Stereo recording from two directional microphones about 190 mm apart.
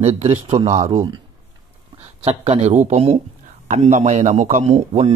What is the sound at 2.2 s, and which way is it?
A man's voice, 35° right (ahead or behind).